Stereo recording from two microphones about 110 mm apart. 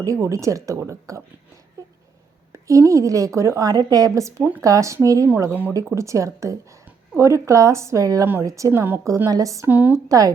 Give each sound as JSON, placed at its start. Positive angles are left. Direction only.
{"t": 0.0, "sound": "a woman's voice", "side_deg": -30}
{"t": 2.5, "sound": "a woman's voice", "side_deg": -30}
{"t": 9.6, "sound": "a woman's voice", "side_deg": -15}
{"t": 10.1, "sound": "speech", "side_deg": -30}